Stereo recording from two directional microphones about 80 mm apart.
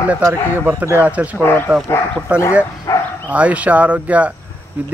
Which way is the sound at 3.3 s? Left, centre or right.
Centre.